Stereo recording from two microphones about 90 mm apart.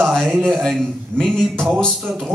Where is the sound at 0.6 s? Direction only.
5° left (ahead or behind).